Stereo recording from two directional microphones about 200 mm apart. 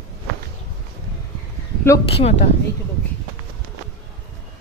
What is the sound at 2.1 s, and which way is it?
Speech, 30° left (ahead or behind).